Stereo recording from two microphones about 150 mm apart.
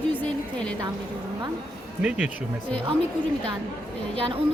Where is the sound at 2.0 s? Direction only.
10° right (ahead or behind).